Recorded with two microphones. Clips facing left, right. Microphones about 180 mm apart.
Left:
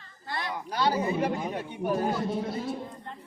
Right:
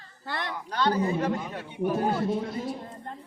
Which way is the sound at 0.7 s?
10° left (ahead or behind).